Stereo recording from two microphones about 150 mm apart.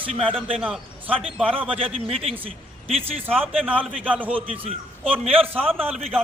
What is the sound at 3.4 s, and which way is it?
Speech, 5° left (ahead or behind).